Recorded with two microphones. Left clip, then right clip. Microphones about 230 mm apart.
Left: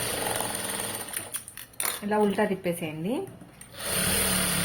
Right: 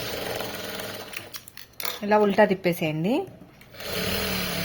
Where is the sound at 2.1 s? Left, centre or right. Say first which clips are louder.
Right 6 dB; right.